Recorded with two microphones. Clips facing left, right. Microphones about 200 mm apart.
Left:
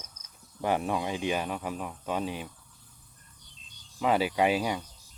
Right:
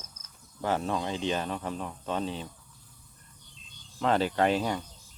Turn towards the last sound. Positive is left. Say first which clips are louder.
# even
turn(degrees=10)  # may be behind; listen again after turning